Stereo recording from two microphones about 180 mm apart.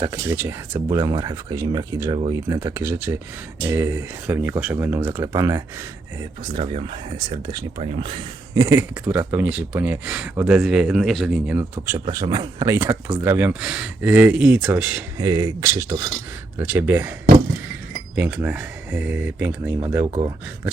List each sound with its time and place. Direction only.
0.0 s speech: 15° right (ahead or behind)
8.6 s speech: 15° right (ahead or behind)
11.5 s speech: 10° right (ahead or behind)
11.9 s speech: 25° right (ahead or behind); by 15.0 s 5° right (ahead or behind)
15.2 s speech: 20° right (ahead or behind)